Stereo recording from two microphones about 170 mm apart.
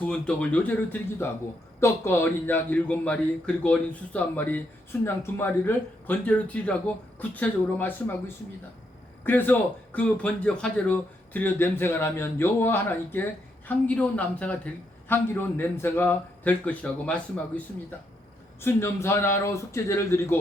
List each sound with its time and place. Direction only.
0.0 s a man's voice: 5° left (ahead or behind)
9.2 s a man's voice: 10° left (ahead or behind)
18.6 s a man's voice: 15° left (ahead or behind)